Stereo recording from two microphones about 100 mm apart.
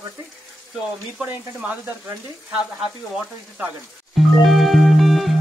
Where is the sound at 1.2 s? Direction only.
20° right (ahead or behind).